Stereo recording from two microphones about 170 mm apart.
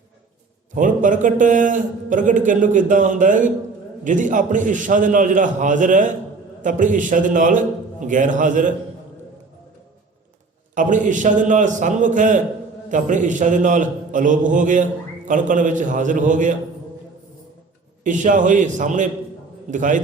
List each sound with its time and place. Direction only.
0.7 s a man's voice: 50° right (ahead or behind)
10.8 s a man's voice: 50° right (ahead or behind)
18.0 s a man's voice: 50° right (ahead or behind)